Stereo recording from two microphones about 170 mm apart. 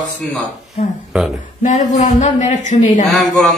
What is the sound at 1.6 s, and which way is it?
Speech, 45° left (ahead or behind).